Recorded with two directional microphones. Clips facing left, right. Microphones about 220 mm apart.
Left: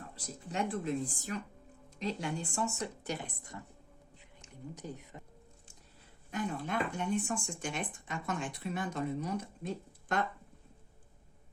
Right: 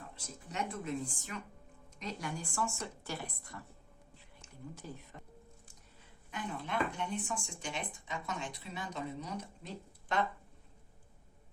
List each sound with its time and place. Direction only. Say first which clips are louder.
0.2 s speech: left 4 dB; 30° left (ahead or behind)
2.0 s speech: left 5 dB; 25° left (ahead or behind)
6.3 s speech: left 3 dB; 45° left (ahead or behind)